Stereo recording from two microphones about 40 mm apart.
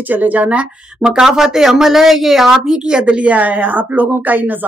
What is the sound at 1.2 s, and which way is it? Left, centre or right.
A woman's voice, centre.